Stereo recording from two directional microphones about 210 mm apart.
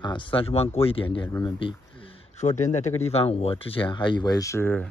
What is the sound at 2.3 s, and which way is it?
A man's voice, 35° left (ahead or behind).